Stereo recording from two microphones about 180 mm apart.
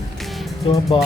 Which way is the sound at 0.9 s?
25° left (ahead or behind).